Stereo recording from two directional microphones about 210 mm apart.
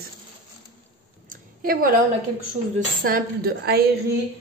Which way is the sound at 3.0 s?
45° right (ahead or behind).